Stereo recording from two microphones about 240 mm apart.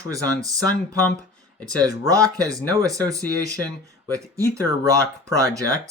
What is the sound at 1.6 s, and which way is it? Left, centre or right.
Speech, centre.